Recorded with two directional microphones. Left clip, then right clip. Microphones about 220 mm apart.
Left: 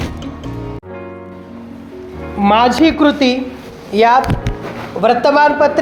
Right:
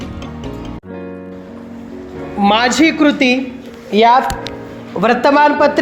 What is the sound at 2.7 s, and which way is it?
A woman's voice, 10° right (ahead or behind).